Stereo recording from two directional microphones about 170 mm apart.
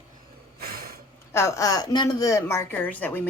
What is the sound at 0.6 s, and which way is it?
Snort, 60° right (ahead or behind).